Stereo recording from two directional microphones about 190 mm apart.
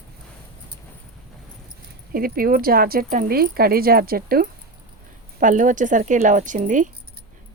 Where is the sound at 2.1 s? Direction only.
50° right (ahead or behind).